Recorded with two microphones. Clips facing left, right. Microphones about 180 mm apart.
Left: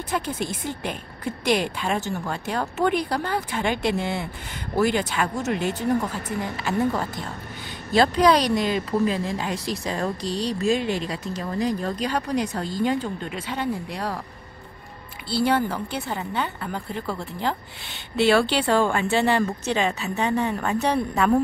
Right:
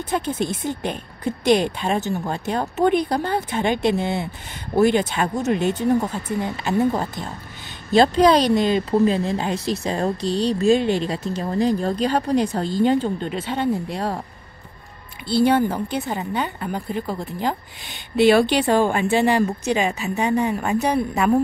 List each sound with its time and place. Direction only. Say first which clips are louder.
0.1 s speech: right 4 dB; 25° right (ahead or behind)
15.2 s a woman's voice: right 5 dB; 20° right (ahead or behind)